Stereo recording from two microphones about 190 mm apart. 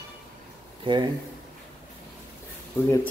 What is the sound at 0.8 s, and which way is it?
Speech, 25° right (ahead or behind).